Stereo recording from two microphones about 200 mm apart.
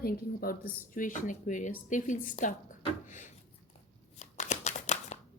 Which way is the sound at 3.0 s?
40° left (ahead or behind).